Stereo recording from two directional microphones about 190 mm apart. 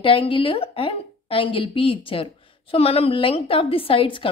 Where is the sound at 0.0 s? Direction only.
25° left (ahead or behind).